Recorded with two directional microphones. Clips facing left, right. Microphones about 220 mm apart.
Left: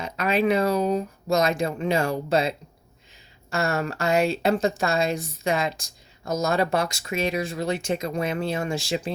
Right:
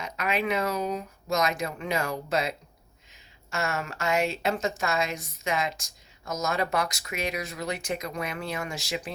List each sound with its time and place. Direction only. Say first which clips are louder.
0.0 s speech: left 6 dB; 30° left (ahead or behind)